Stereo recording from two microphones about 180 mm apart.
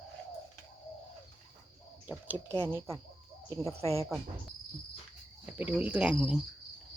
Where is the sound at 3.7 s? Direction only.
35° right (ahead or behind).